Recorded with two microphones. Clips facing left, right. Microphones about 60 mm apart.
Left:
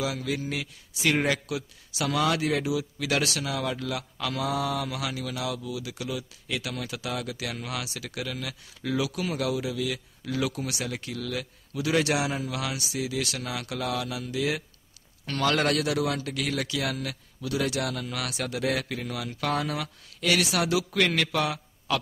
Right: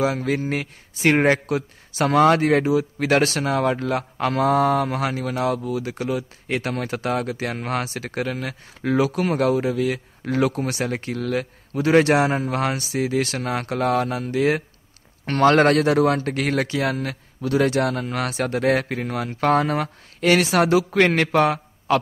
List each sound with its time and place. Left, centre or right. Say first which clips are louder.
0.0 s speech: right 8 dB; right